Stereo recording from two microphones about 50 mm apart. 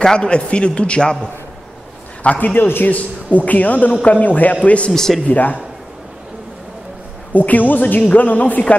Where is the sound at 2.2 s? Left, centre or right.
Left.